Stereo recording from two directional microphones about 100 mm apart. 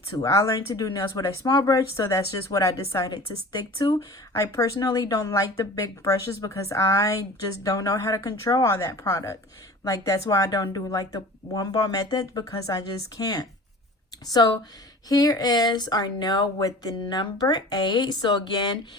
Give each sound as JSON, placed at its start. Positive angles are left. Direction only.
{"t": 0.2, "sound": "speech", "side_deg": 35}